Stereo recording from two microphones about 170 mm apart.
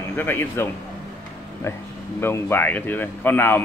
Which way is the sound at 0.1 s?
10° left (ahead or behind).